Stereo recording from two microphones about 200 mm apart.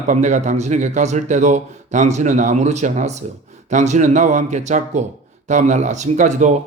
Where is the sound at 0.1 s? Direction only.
35° right (ahead or behind).